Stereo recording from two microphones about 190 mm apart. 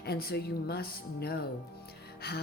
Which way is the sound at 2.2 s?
55° left (ahead or behind).